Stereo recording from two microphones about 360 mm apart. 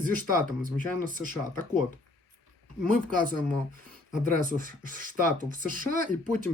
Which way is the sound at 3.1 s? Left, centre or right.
Right.